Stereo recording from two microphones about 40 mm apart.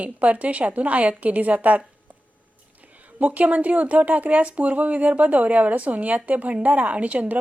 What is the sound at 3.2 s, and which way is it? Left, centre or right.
A woman's voice, right.